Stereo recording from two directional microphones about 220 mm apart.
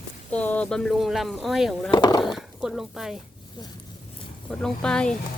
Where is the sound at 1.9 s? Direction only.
20° left (ahead or behind).